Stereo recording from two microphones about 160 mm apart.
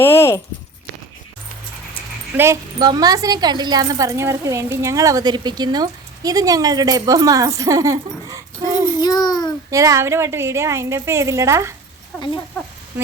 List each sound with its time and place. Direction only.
0.0 s speech: 15° left (ahead or behind)
2.3 s a woman's voice: 15° right (ahead or behind)
2.7 s speech: 25° right (ahead or behind)
9.0 s child singing: 25° left (ahead or behind)
9.6 s a woman's voice: 20° right (ahead or behind)
12.1 s speech: 5° left (ahead or behind)